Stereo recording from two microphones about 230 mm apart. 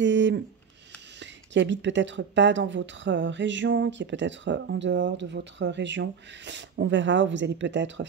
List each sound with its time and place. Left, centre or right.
0.0 s speech: right